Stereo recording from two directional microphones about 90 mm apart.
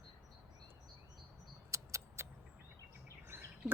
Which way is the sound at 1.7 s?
35° right (ahead or behind).